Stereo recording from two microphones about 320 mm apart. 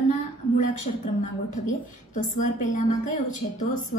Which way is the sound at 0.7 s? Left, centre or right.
Left.